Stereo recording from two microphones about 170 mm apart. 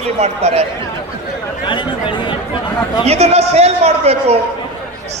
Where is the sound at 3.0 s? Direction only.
40° right (ahead or behind).